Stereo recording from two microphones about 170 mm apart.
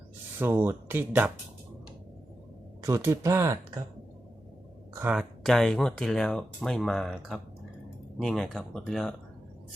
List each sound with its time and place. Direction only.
0.3 s speech: 15° right (ahead or behind)
2.8 s speech: 20° right (ahead or behind)
4.9 s speech: 10° right (ahead or behind)
5.4 s speech: centre (ahead or behind)